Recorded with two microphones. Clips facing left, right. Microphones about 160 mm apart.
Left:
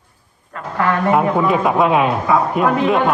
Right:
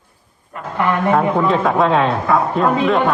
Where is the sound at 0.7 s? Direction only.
15° right (ahead or behind).